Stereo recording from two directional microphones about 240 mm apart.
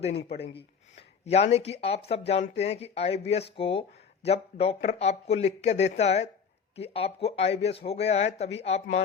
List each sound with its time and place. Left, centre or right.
1.2 s speech: left